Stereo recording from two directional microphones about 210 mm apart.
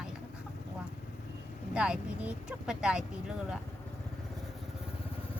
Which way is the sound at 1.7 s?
5° right (ahead or behind).